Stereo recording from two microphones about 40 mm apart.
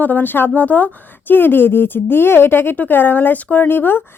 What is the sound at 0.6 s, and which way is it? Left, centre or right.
Speech, left.